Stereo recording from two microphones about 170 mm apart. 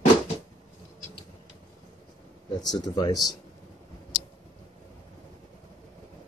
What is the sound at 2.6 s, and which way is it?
Speech, 25° left (ahead or behind).